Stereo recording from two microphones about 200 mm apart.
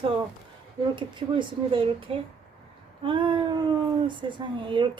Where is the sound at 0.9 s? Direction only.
25° right (ahead or behind).